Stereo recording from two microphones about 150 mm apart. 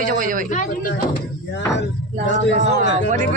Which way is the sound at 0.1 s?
65° right (ahead or behind).